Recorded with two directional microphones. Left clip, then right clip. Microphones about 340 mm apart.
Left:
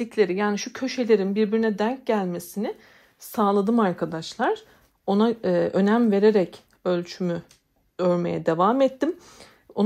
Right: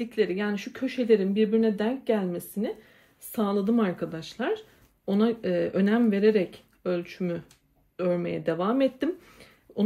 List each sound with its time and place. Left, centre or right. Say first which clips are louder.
0.0 s a woman's voice: left 5 dB; centre